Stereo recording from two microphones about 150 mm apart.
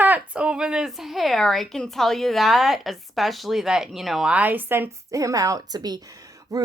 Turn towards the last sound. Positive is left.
turn(degrees=-25)  # may be behind; listen again after turning